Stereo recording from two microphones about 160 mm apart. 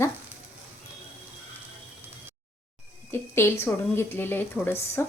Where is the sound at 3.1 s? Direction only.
15° left (ahead or behind).